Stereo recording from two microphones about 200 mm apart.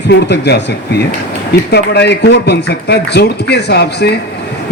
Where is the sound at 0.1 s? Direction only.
55° left (ahead or behind).